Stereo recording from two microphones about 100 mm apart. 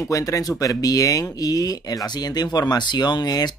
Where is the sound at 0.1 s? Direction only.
35° left (ahead or behind).